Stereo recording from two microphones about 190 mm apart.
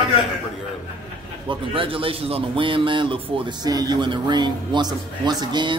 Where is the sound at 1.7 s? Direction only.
30° right (ahead or behind).